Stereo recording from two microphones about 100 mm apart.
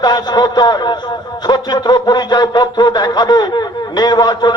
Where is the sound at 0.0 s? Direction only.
45° left (ahead or behind).